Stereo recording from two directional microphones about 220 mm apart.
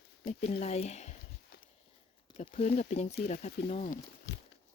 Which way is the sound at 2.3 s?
30° left (ahead or behind).